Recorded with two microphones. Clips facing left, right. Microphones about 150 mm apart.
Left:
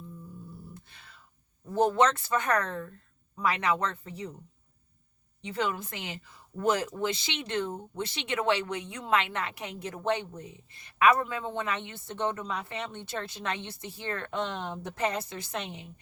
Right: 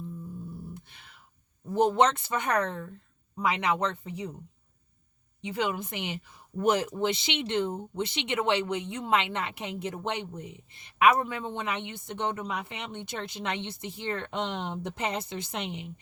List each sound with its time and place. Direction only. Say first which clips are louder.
0.9 s a sound: even; 20° right (ahead or behind)
1.7 s speech: right 1 dB; 20° right (ahead or behind)
5.4 s speech: right 1 dB; 15° right (ahead or behind)